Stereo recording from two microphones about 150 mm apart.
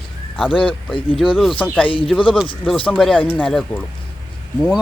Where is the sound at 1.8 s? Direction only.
35° left (ahead or behind).